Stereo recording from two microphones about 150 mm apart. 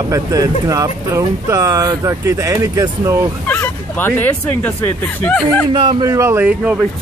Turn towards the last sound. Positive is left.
turn(degrees=-10)  # may be behind; listen again after turning